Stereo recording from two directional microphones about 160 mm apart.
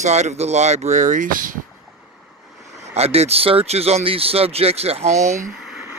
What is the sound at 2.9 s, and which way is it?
Speech, 40° right (ahead or behind).